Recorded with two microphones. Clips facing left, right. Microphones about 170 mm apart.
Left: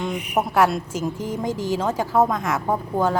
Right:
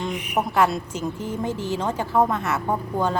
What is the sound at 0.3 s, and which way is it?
A woman's voice, 10° left (ahead or behind).